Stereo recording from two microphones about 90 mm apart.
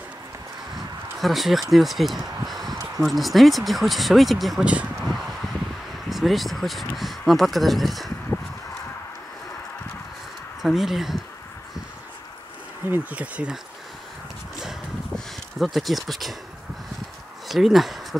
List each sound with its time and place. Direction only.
1.2 s speech: centre (ahead or behind)
5.0 s a sound: centre (ahead or behind)
6.0 s speech: centre (ahead or behind)
10.6 s speech: centre (ahead or behind)
12.9 s speech: 15° right (ahead or behind)
15.1 s speech: centre (ahead or behind)
17.5 s speech: centre (ahead or behind)